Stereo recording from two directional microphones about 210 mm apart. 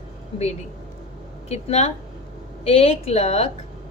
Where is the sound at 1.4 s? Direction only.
30° left (ahead or behind).